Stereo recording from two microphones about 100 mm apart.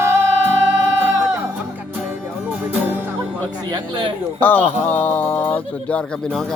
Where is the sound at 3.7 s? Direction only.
50° right (ahead or behind).